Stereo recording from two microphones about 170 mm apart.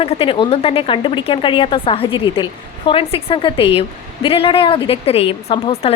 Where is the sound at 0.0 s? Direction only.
30° left (ahead or behind).